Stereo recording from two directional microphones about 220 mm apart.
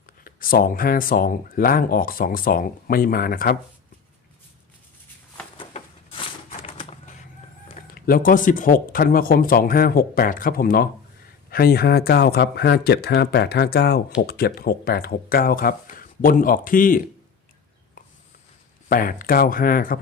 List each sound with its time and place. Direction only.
0.3 s speech: 40° left (ahead or behind)
5.5 s a sound: 25° left (ahead or behind)
7.9 s speech: 40° left (ahead or behind)
18.9 s speech: 40° left (ahead or behind)